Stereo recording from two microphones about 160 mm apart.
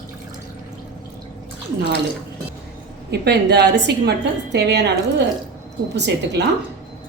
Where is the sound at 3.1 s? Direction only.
90° right.